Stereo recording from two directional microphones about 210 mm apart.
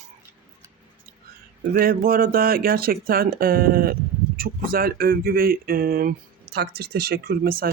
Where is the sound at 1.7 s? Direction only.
45° right (ahead or behind).